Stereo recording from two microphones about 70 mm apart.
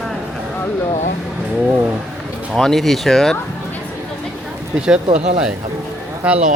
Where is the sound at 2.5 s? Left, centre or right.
Centre.